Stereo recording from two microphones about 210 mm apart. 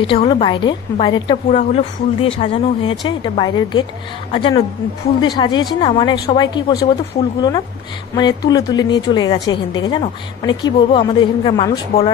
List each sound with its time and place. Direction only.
0.0 s a woman's voice: 25° left (ahead or behind)
1.5 s a woman's voice: 35° left (ahead or behind); by 6.9 s 20° left (ahead or behind)
8.2 s a woman's voice: 20° left (ahead or behind)